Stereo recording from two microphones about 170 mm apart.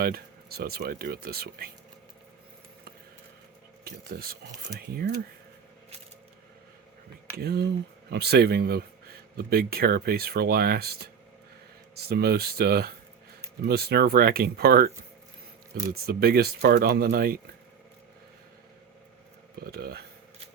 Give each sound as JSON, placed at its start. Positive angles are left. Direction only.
{"t": 0.0, "sound": "speech", "side_deg": -65}
{"t": 3.8, "sound": "speech", "side_deg": -60}
{"t": 7.3, "sound": "speech", "side_deg": -70}
{"t": 19.5, "sound": "speech", "side_deg": -70}